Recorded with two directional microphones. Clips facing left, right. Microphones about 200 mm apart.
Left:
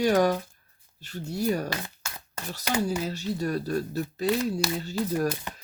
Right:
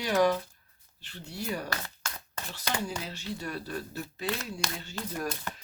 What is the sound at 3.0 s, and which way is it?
Speech, 40° left (ahead or behind).